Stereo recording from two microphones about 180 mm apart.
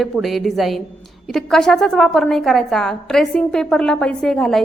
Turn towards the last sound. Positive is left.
turn(degrees=0)  # may be behind; listen again after turning